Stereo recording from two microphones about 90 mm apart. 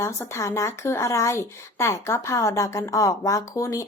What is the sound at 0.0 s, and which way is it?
Speech, 35° left (ahead or behind).